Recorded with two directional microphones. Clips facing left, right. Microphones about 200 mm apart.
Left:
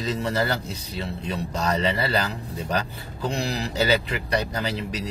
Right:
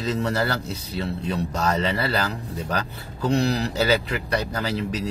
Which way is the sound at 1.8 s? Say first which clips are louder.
Even; 10° left (ahead or behind).